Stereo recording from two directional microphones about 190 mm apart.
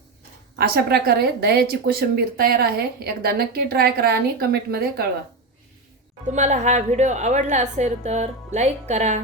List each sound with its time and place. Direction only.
0.6 s a woman's voice: 55° right (ahead or behind)
6.3 s a woman's voice: 40° right (ahead or behind)